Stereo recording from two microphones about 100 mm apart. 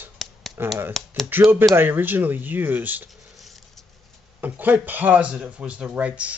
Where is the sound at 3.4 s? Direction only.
Centre (ahead or behind).